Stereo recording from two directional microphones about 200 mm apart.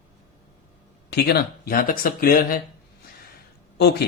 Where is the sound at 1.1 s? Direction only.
50° left (ahead or behind).